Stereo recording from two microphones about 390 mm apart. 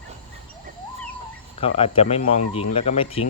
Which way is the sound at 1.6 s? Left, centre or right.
Centre.